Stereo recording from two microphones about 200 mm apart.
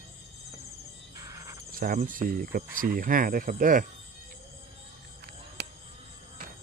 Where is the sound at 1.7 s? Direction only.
45° right (ahead or behind).